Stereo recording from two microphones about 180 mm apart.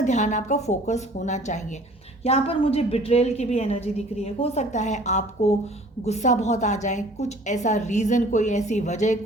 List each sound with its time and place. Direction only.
0.0 s a woman's voice: 40° left (ahead or behind)